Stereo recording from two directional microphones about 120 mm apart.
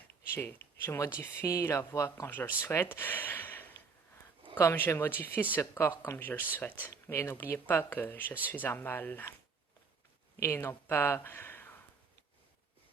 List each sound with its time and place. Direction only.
0.3 s speech: 20° left (ahead or behind)
10.4 s speech: 20° left (ahead or behind)